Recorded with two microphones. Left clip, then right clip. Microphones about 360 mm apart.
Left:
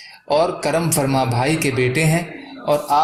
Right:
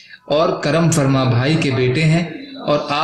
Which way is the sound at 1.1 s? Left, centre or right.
Centre.